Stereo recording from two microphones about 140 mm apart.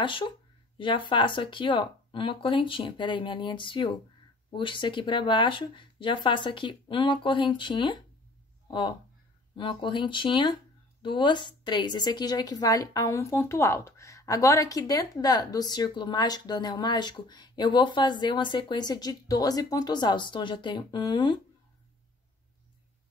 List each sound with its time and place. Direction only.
0.0 s speech: 35° left (ahead or behind)